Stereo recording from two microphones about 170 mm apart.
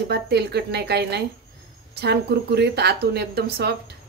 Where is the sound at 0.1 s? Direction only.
70° right (ahead or behind).